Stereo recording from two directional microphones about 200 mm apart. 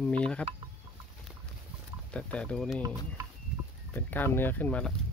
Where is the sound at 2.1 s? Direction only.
5° left (ahead or behind).